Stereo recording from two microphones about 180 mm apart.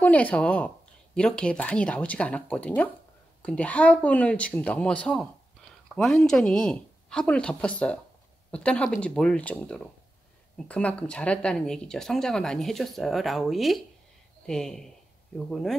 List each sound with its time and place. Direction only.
0.0 s speech: 10° left (ahead or behind)